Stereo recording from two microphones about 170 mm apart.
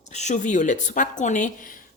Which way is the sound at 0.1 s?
45° left (ahead or behind).